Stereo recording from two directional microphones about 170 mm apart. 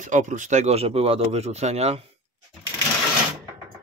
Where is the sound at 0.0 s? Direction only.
45° right (ahead or behind).